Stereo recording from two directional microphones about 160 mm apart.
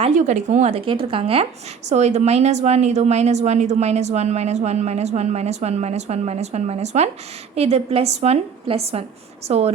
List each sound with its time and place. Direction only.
0.0 s a woman's voice: 45° right (ahead or behind)